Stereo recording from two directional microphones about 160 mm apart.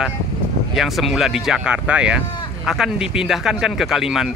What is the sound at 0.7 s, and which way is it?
Speech, centre (ahead or behind).